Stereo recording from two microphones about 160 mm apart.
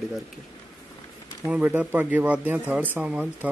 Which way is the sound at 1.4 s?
10° right (ahead or behind).